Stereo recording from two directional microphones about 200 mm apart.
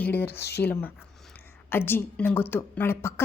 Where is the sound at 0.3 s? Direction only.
55° left (ahead or behind).